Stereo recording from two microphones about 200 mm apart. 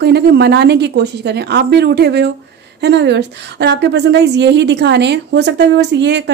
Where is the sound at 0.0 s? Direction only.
55° right (ahead or behind).